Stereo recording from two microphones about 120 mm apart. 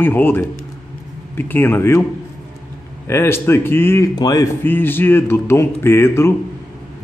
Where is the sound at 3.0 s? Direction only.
20° left (ahead or behind).